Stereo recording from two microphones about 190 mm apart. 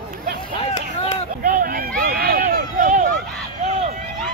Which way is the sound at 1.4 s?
50° right (ahead or behind).